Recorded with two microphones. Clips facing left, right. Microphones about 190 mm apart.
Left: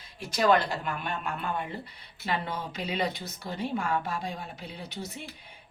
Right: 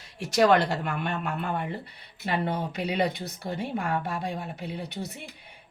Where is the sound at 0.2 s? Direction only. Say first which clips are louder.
Right 3 dB; 75° right (ahead or behind).